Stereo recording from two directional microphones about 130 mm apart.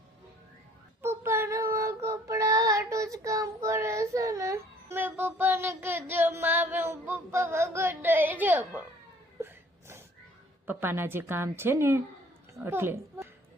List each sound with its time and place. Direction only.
1.0 s child singing: 20° right (ahead or behind)
9.4 s sneeze: 20° right (ahead or behind)
10.7 s a woman's voice: 15° right (ahead or behind)